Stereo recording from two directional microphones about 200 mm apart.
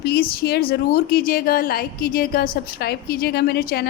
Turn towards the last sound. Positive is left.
turn(degrees=50)  # may be behind; listen again after turning